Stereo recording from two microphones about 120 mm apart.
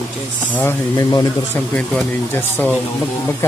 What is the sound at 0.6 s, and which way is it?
Speech, 20° left (ahead or behind).